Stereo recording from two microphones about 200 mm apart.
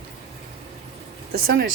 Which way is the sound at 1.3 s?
70° right (ahead or behind).